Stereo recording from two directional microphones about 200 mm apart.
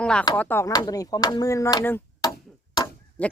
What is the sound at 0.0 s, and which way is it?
Speech, 5° left (ahead or behind).